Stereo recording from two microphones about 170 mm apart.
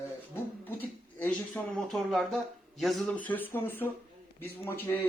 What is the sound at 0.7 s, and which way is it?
Speech, 10° left (ahead or behind).